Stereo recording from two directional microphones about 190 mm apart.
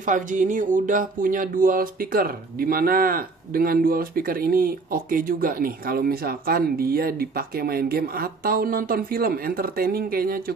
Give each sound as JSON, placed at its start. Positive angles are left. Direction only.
{"t": 0.0, "sound": "speech", "side_deg": -45}